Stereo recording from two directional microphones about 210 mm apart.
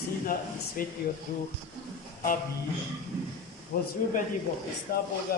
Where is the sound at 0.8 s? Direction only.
45° left (ahead or behind).